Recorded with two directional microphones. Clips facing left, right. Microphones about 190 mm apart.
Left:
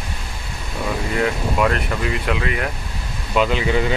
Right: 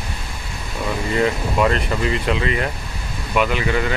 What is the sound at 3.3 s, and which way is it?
Speech, 20° left (ahead or behind).